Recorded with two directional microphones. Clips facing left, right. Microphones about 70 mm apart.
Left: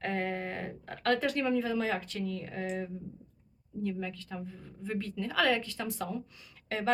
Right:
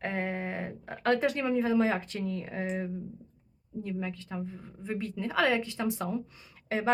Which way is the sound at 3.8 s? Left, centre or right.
Right.